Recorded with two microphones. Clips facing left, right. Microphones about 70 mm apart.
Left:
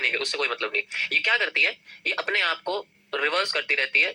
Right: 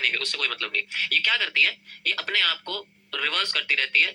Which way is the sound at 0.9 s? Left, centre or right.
Centre.